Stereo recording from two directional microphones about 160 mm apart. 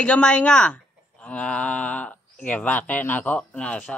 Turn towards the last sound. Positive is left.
turn(degrees=5)  # may be behind; listen again after turning